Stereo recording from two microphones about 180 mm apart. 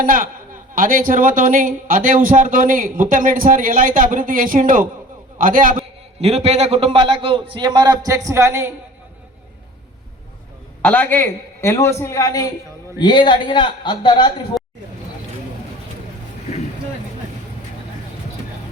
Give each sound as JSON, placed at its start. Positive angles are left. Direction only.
{"t": 0.0, "sound": "speech", "side_deg": -50}
{"t": 6.1, "sound": "a man's voice", "side_deg": -35}
{"t": 10.8, "sound": "a man's voice", "side_deg": 10}